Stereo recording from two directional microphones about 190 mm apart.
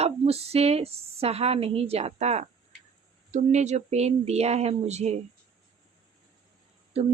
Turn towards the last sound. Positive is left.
turn(degrees=-35)  # may be behind; listen again after turning